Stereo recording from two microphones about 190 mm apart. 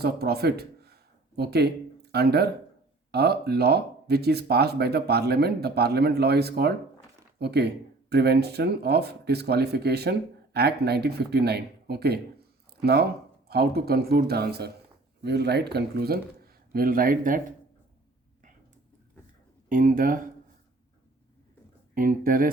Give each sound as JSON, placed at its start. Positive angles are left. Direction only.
{"t": 0.0, "sound": "a man's voice", "side_deg": -55}
{"t": 19.6, "sound": "speech", "side_deg": -45}
{"t": 21.9, "sound": "speech", "side_deg": -50}